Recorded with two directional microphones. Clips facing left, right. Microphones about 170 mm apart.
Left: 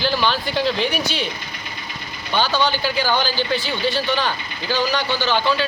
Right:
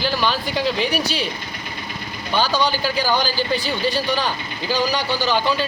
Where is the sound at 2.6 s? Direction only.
40° right (ahead or behind).